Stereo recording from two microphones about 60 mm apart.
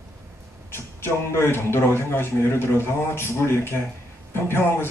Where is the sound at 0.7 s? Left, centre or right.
Left.